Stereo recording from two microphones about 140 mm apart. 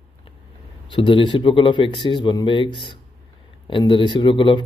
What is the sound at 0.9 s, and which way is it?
Speech, 35° left (ahead or behind).